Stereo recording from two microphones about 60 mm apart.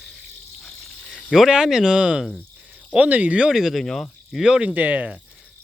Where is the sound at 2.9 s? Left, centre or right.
Right.